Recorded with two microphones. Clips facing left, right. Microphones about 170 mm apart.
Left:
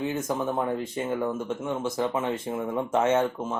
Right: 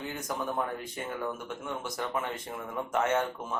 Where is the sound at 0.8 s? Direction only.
25° left (ahead or behind).